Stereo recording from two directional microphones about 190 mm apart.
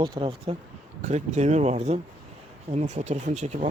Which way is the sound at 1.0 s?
35° right (ahead or behind).